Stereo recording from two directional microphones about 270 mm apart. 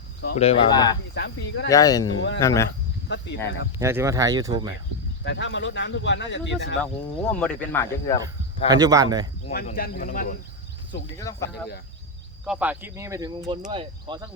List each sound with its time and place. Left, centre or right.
0.3 s speech: centre
1.1 s speech: left
1.7 s speech: centre
2.1 s speech: left
2.4 s speech: centre
3.8 s speech: centre
5.2 s speech: left
7.3 s speech: centre
8.2 s speech: centre
9.5 s speech: left
11.2 s speech: centre
12.5 s speech: centre